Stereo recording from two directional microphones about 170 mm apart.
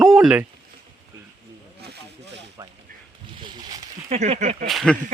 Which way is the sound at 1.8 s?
85° right.